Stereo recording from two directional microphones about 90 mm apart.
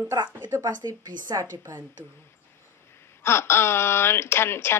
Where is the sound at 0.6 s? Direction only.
50° right (ahead or behind).